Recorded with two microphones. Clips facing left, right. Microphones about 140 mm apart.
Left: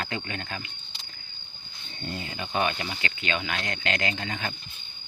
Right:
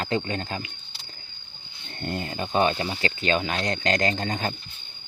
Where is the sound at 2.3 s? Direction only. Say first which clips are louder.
Right 5 dB; 35° right (ahead or behind).